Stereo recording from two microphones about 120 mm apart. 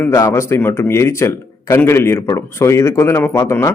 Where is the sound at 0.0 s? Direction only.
25° left (ahead or behind).